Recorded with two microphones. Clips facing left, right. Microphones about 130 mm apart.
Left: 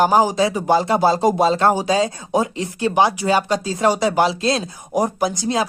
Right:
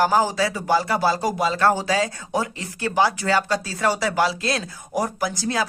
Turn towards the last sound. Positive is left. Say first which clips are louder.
# left 4 dB
turn(degrees=20)  # may be behind; listen again after turning